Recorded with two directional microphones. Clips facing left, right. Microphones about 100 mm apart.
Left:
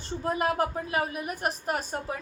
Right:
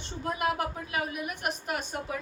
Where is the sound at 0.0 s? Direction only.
35° left (ahead or behind).